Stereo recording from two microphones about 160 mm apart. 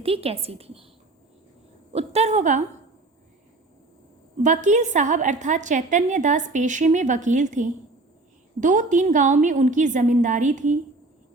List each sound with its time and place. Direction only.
0.0 s a woman's voice: 40° right (ahead or behind)
1.9 s a woman's voice: 40° right (ahead or behind)
4.4 s a woman's voice: 50° right (ahead or behind)